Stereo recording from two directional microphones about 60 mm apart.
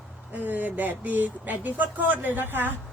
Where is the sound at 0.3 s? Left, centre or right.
Right.